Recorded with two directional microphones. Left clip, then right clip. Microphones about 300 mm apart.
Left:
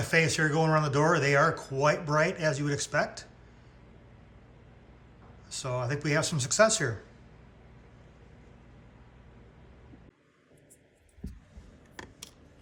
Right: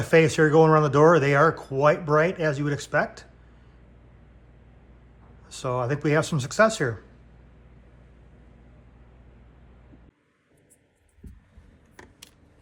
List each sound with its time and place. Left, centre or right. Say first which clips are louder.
0.0 s speech: right 7 dB; centre
5.5 s speech: right 6 dB; centre